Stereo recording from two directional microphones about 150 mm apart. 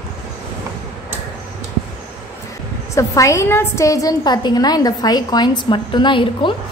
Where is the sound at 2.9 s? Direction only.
20° left (ahead or behind).